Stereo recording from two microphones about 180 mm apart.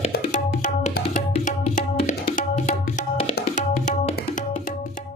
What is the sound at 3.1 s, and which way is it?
Music, 40° left (ahead or behind).